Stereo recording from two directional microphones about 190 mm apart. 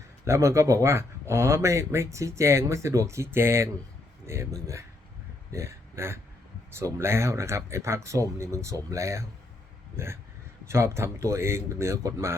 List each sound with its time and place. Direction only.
0.3 s speech: 15° right (ahead or behind)
10.7 s speech: 15° right (ahead or behind)